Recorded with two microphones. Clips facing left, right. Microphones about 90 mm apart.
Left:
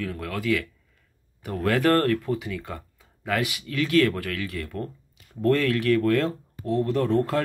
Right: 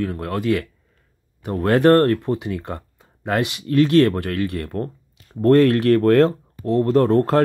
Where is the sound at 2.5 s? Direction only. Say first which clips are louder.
Right 6 dB; 40° right (ahead or behind).